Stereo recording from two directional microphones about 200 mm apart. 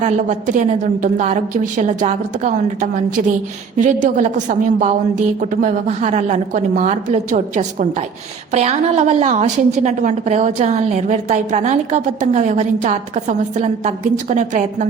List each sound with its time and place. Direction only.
0.0 s a woman's voice: 35° right (ahead or behind)